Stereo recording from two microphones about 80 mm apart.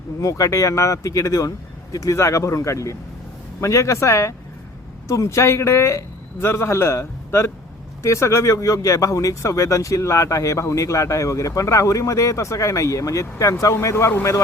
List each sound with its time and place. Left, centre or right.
0.2 s speech: left